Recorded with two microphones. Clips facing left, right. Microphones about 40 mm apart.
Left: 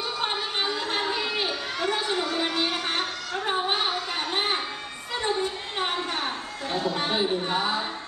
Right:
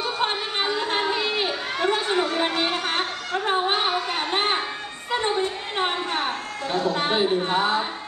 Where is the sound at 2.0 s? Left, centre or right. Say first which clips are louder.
Right 4 dB; right.